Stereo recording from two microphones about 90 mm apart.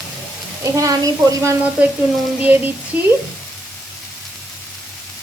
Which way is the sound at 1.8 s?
15° right (ahead or behind).